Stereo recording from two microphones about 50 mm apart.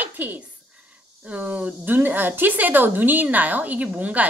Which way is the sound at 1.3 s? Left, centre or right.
Right.